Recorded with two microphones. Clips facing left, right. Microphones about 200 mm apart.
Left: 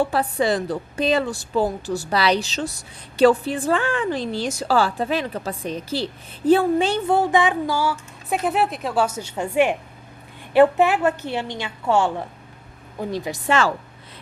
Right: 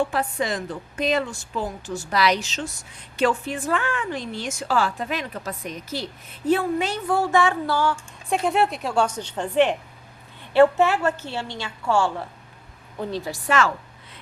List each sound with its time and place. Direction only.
0.0 s a woman's voice: 35° left (ahead or behind)